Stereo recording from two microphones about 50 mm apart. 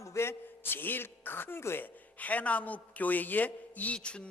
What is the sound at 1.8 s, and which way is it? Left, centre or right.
Speech, left.